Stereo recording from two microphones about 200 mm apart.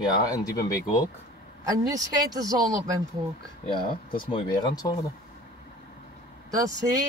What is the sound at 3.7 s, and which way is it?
Speech, 25° left (ahead or behind).